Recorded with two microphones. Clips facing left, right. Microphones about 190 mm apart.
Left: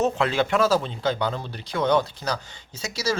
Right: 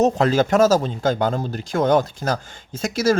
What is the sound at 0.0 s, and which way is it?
Speech, 40° right (ahead or behind).